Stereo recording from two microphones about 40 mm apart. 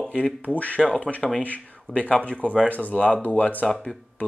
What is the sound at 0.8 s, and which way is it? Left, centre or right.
Speech, left.